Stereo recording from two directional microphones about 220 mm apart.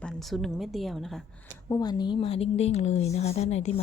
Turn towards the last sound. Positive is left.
turn(degrees=30)  # may be behind; listen again after turning